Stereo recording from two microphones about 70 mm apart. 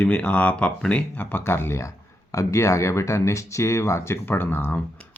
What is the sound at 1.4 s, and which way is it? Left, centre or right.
Speech, left.